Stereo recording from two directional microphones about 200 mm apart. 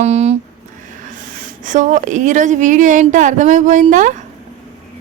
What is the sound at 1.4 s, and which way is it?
A woman's voice, 40° right (ahead or behind).